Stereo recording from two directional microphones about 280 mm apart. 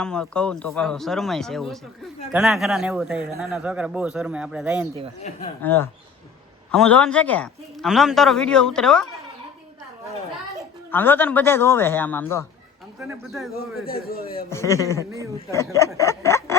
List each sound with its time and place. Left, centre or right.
0.0 s speech: centre
5.6 s a man's voice: centre
10.9 s a man's voice: centre
13.8 s a man's voice: left
14.5 s a man's voice: centre
16.0 s a sound: centre